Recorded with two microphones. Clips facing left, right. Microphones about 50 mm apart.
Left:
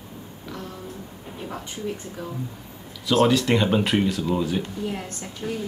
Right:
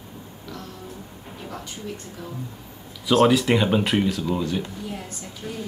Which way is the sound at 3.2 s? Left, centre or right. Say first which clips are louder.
Right 1 dB; centre.